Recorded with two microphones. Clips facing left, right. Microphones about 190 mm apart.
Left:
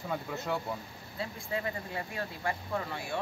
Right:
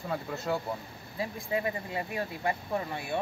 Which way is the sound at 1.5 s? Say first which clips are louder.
Right 4 dB; 15° right (ahead or behind).